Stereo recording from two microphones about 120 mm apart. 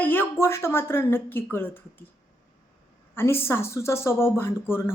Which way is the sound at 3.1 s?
20° left (ahead or behind).